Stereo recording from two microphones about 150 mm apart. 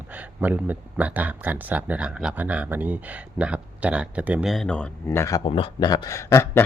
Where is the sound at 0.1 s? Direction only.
10° right (ahead or behind).